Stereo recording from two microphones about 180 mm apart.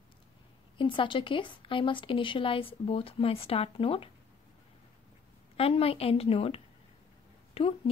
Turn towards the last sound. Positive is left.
turn(degrees=30)  # may be behind; listen again after turning